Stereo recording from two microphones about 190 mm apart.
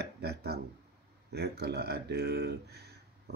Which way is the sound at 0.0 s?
60° right (ahead or behind).